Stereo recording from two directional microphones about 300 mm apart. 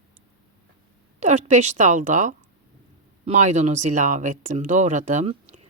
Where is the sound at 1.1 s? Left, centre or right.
Right.